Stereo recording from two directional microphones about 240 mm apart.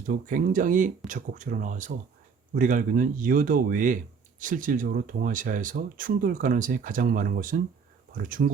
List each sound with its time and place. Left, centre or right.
0.1 s speech: right